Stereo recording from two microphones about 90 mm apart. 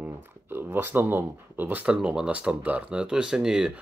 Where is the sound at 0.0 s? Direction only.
25° right (ahead or behind).